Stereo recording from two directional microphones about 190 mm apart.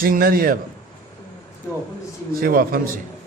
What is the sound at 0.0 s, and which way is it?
Speech, 50° right (ahead or behind).